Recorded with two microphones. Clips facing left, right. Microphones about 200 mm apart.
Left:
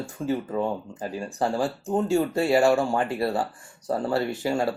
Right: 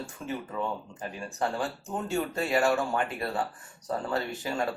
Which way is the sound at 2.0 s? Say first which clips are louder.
Left 6 dB; 30° left (ahead or behind).